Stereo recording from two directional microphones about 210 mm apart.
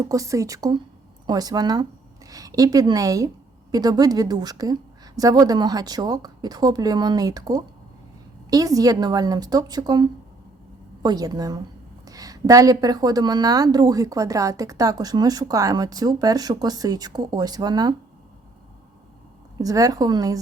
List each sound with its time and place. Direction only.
0.0 s a woman's voice: 15° right (ahead or behind)
19.5 s speech: 15° right (ahead or behind)